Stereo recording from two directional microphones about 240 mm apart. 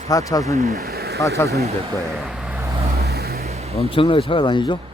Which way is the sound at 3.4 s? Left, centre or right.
Right.